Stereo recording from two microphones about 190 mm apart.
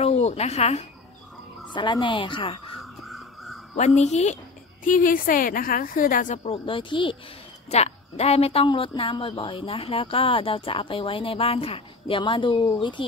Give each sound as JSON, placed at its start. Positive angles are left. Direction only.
{"t": 0.0, "sound": "a woman's voice", "side_deg": 35}
{"t": 2.8, "sound": "a sound", "side_deg": 0}
{"t": 3.7, "sound": "a woman's voice", "side_deg": 35}